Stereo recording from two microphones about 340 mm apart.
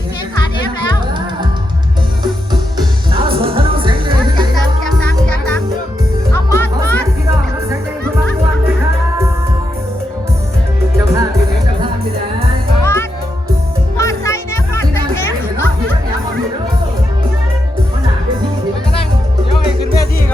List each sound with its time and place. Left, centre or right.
2.5 s music: centre
6.3 s music: centre
10.9 s music: centre
12.8 s music: centre
19.8 s music: left